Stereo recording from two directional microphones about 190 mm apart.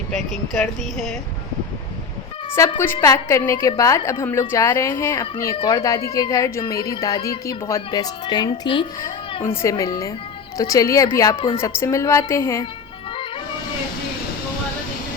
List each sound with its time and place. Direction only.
0.1 s speech: 5° left (ahead or behind)
2.6 s a woman's voice: 15° left (ahead or behind)